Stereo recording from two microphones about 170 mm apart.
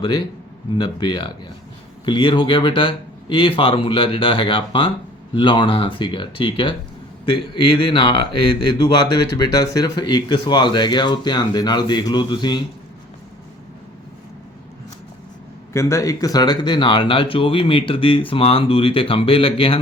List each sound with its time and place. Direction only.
0.8 s speech: 25° left (ahead or behind)
15.7 s speech: 15° left (ahead or behind); by 19.8 s 30° left (ahead or behind)